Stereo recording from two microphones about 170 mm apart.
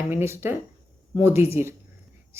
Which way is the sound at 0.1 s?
15° right (ahead or behind).